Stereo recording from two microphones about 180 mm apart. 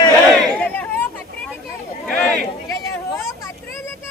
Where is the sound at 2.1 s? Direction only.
5° left (ahead or behind).